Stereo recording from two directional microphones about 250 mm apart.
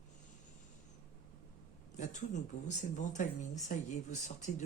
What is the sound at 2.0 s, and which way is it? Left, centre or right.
Speech, left.